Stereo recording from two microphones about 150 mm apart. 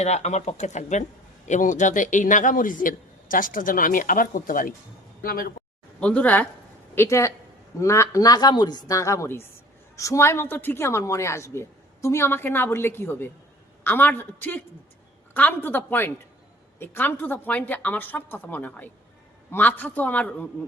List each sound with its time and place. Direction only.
0.0 s a man's voice: 50° left (ahead or behind); by 4.7 s 65° left (ahead or behind)
5.2 s speech: 80° left
6.0 s a woman's voice: 10° left (ahead or behind)